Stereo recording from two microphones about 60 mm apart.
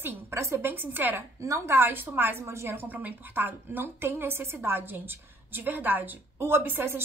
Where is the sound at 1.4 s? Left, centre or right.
Right.